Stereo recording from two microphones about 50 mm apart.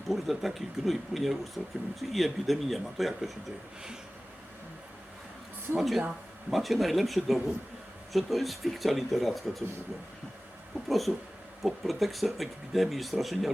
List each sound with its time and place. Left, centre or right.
0.1 s speech: centre
5.7 s speech: centre
10.8 s speech: centre